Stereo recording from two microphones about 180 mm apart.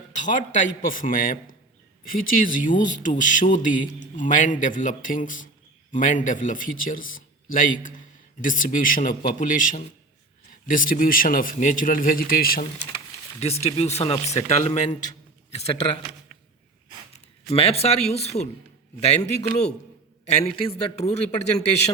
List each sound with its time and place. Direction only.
0.1 s a man's voice: 45° left (ahead or behind)
13.4 s speech: 35° left (ahead or behind)
17.5 s speech: 35° left (ahead or behind)